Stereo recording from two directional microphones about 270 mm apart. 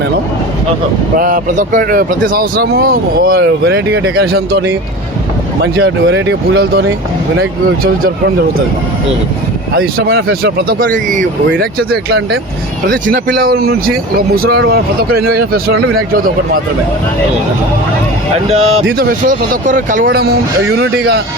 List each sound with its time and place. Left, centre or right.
1.2 s speech: right
9.7 s speech: right
18.4 s speech: right